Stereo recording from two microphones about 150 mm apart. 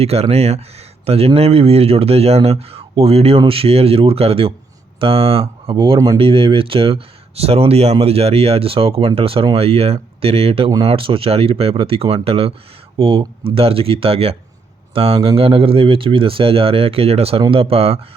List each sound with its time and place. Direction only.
0.0 s speech: 45° right (ahead or behind)